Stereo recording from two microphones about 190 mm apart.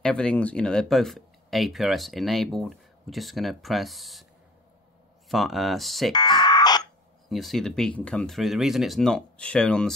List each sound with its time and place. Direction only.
0.0 s speech: 5° left (ahead or behind)
5.3 s speech: centre (ahead or behind)
6.1 s buzzer: 25° left (ahead or behind)
7.2 s speech: centre (ahead or behind)